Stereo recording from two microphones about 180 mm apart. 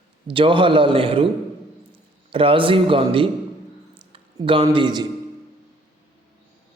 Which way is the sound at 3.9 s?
30° right (ahead or behind).